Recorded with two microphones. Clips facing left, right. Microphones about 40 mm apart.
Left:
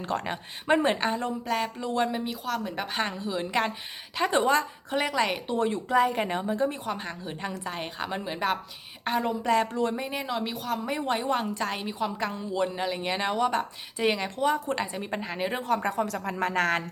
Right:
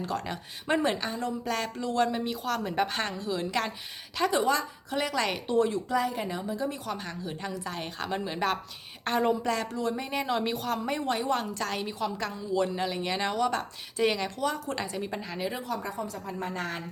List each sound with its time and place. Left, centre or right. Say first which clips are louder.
0.0 s speech: left 2 dB; left
1.5 s a woman's voice: left 4 dB; centre
1.8 s speech: right 4 dB; left
2.1 s speech: even; centre
2.9 s a woman's voice: left 2 dB; centre
4.3 s speech: left 4 dB; left; by 5.5 s centre
5.5 s a woman's voice: left 2 dB; left; by 9.5 s centre
9.5 s speech: left 5 dB; left
9.9 s a woman's voice: even; centre
10.2 s speech: right 3 dB; centre
11.0 s speech: left 3 dB; centre; by 16.0 s left
16.0 s a woman's voice: left 6 dB; left